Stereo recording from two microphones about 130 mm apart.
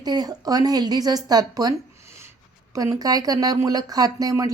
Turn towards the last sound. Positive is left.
turn(degrees=-30)  # may be behind; listen again after turning